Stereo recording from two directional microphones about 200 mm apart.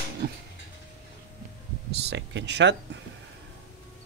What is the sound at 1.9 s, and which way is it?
Speech, 60° right (ahead or behind).